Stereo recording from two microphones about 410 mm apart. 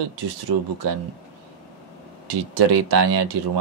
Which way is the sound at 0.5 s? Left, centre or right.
Right.